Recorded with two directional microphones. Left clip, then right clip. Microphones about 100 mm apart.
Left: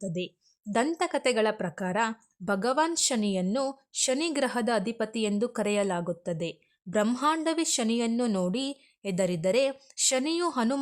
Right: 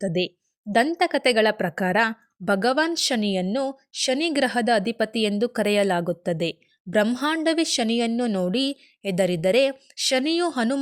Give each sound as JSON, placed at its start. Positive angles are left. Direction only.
{"t": 0.0, "sound": "a woman's voice", "side_deg": -30}
{"t": 0.9, "sound": "a woman's voice", "side_deg": -15}
{"t": 7.4, "sound": "a woman's voice", "side_deg": -15}
{"t": 8.1, "sound": "a woman's voice", "side_deg": -10}
{"t": 8.4, "sound": "a woman's voice", "side_deg": -25}